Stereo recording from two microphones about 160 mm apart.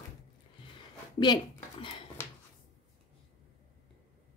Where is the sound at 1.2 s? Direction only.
30° left (ahead or behind).